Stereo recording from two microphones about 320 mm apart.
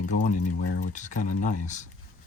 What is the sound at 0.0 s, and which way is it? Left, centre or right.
Speech, left.